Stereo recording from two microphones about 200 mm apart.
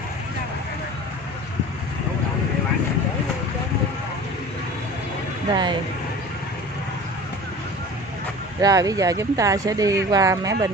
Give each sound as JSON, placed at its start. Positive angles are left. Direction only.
{"t": 5.5, "sound": "speech", "side_deg": -20}
{"t": 8.5, "sound": "speech", "side_deg": -15}